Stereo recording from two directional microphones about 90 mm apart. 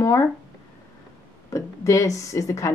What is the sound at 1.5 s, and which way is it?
Speech, 35° left (ahead or behind).